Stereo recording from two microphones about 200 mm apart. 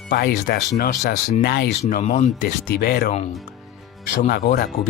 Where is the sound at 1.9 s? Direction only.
40° left (ahead or behind).